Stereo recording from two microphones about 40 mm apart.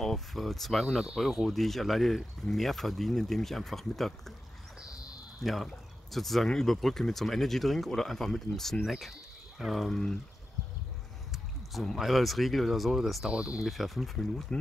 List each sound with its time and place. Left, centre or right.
0.0 s speech: centre
5.4 s speech: centre
8.8 s speech: centre
9.8 s speech: centre
12.0 s speech: centre
13.3 s speech: right
13.7 s speech: centre
14.5 s speech: left